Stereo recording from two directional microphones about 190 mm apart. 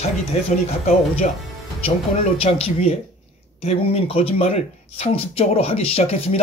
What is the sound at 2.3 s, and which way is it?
Speech, 30° left (ahead or behind).